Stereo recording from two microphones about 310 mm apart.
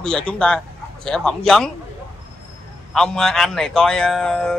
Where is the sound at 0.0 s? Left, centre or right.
Centre.